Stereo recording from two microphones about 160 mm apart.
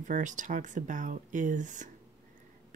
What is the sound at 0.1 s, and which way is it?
Speech, 50° right (ahead or behind).